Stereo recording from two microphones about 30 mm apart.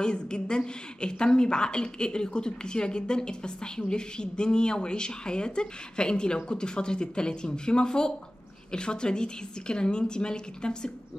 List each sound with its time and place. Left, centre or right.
0.0 s a woman's voice: left